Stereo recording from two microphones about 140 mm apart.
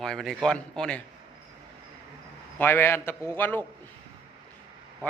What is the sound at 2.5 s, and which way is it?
A man's voice, 15° left (ahead or behind).